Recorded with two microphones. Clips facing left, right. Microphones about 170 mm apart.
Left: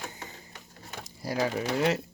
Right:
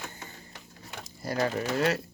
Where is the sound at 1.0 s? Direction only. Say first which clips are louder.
Even; 10° left (ahead or behind).